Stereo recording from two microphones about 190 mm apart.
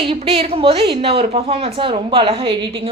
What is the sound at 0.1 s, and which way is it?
A woman's voice, 30° right (ahead or behind).